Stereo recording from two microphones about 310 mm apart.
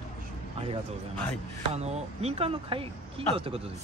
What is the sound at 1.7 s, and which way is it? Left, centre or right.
Speech, right.